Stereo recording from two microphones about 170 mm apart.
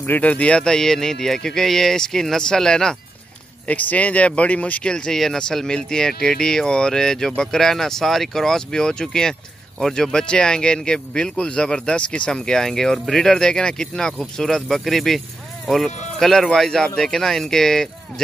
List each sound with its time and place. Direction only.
0.0 s speech: 10° left (ahead or behind)